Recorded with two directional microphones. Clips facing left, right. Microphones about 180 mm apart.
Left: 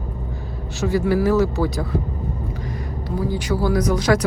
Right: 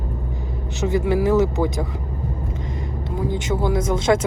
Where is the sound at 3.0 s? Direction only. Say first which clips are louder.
Left 1 dB; 20° right (ahead or behind).